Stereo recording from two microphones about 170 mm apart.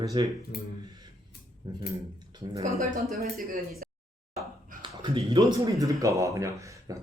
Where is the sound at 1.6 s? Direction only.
25° right (ahead or behind).